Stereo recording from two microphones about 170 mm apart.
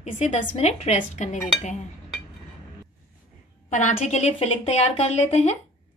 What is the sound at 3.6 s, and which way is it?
Speech, 45° left (ahead or behind).